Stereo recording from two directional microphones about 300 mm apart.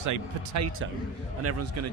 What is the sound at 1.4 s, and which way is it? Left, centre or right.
Speech, right.